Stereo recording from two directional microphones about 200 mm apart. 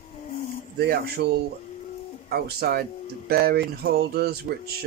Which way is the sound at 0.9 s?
55° right (ahead or behind).